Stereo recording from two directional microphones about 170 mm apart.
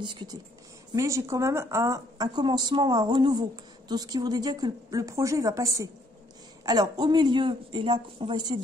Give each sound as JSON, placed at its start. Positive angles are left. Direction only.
{"t": 0.0, "sound": "speech", "side_deg": -25}